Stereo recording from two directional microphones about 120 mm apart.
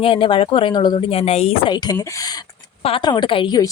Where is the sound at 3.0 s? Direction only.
40° left (ahead or behind).